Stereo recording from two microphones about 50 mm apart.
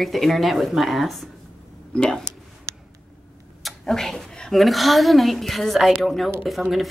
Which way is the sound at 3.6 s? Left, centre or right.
Centre.